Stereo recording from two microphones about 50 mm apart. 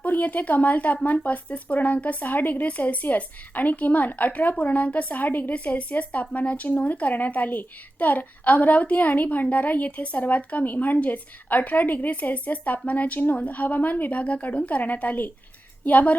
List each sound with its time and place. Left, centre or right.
0.0 s speech: left